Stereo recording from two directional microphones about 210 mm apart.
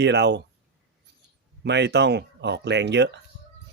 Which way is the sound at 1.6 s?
55° right (ahead or behind).